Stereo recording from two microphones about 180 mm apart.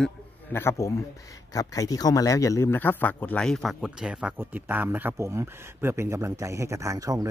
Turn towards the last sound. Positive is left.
turn(degrees=-20)  # may be behind; listen again after turning